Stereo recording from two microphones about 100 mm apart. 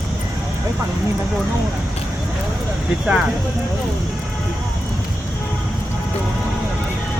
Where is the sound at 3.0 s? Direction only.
10° right (ahead or behind).